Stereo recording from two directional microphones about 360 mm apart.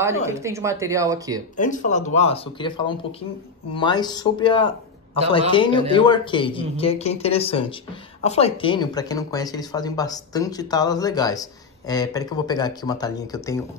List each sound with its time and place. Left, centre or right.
0.0 s speech: centre
1.6 s speech: left